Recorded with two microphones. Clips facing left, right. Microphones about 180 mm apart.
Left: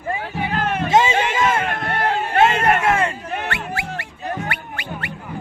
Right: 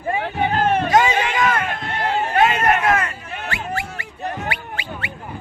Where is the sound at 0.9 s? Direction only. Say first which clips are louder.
Even; 25° left (ahead or behind).